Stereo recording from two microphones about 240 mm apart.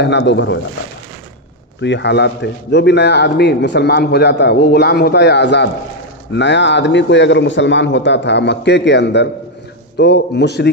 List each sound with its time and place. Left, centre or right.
0.0 s a man's voice: left
1.8 s a man's voice: left